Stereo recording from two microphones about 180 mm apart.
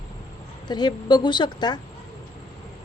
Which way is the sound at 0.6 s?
25° left (ahead or behind).